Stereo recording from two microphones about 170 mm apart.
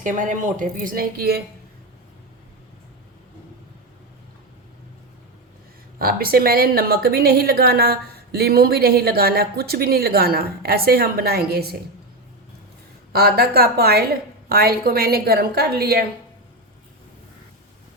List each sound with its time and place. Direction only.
0.0 s a woman's voice: 50° right (ahead or behind)
6.0 s a woman's voice: 60° right (ahead or behind)
13.1 s a woman's voice: 65° right (ahead or behind)